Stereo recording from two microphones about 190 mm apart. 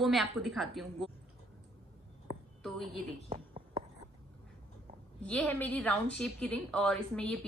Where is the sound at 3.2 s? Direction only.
30° right (ahead or behind).